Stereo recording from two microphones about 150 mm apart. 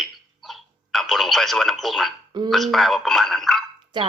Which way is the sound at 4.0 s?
30° right (ahead or behind).